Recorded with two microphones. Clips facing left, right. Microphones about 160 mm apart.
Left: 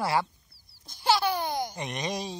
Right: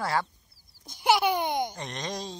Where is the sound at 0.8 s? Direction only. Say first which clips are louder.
Right 2 dB; 15° right (ahead or behind).